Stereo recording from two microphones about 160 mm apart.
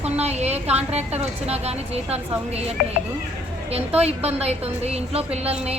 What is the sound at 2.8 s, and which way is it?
Speech, 80° left.